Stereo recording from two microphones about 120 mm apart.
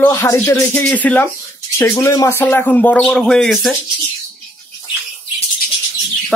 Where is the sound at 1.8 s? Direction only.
25° left (ahead or behind); by 3.7 s centre (ahead or behind).